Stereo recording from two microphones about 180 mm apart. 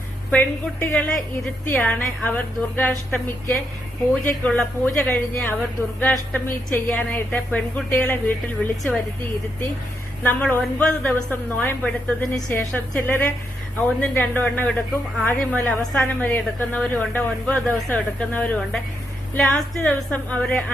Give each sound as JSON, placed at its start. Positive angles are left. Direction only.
{"t": 0.3, "sound": "a woman's voice", "side_deg": 10}
{"t": 4.1, "sound": "a woman's voice", "side_deg": 5}
{"t": 10.2, "sound": "a woman's voice", "side_deg": 10}